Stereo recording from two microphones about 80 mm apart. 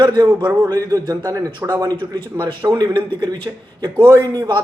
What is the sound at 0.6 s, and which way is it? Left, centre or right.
Speech, right.